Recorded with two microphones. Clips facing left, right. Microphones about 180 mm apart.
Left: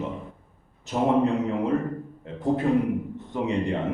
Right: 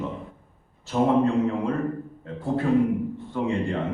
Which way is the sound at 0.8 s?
20° left (ahead or behind).